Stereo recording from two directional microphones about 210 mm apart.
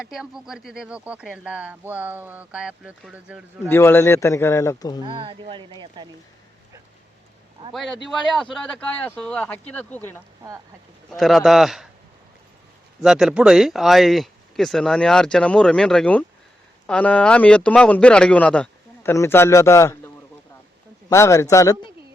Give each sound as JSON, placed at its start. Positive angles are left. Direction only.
{"t": 0.0, "sound": "speech", "side_deg": 0}
{"t": 3.7, "sound": "speech", "side_deg": 10}
{"t": 5.0, "sound": "speech", "side_deg": -25}
{"t": 7.6, "sound": "speech", "side_deg": -25}
{"t": 9.0, "sound": "speech", "side_deg": 5}
{"t": 11.2, "sound": "speech", "side_deg": 0}
{"t": 13.0, "sound": "speech", "side_deg": 0}
{"t": 21.1, "sound": "speech", "side_deg": 15}